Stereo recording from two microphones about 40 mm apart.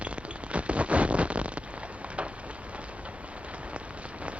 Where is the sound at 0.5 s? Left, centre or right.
Right.